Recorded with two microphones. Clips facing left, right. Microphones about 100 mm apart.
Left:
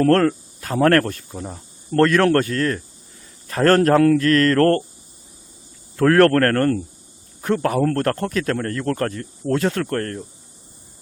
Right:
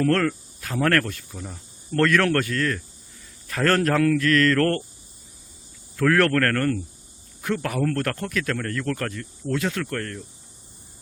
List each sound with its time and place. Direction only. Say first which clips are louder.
0.0 s speech: left 6 dB; 40° left (ahead or behind)
6.0 s speech: left 6 dB; 40° left (ahead or behind)